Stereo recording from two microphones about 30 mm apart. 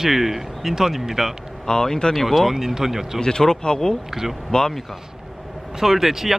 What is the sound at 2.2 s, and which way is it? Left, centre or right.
Speech, centre.